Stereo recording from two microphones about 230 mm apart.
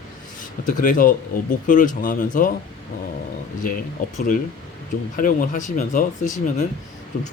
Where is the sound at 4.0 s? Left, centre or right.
Left.